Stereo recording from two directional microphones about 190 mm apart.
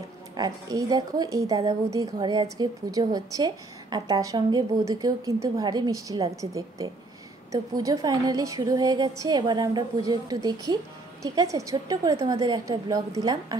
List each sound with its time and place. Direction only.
0.4 s a woman's voice: 20° right (ahead or behind)